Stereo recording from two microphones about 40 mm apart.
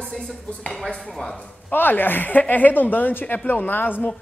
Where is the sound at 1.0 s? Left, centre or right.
Centre.